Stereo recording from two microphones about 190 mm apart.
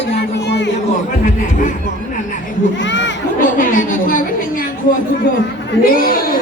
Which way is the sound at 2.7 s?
70° left (ahead or behind).